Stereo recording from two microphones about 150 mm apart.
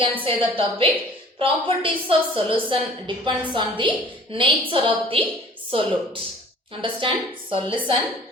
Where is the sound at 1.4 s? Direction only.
35° right (ahead or behind).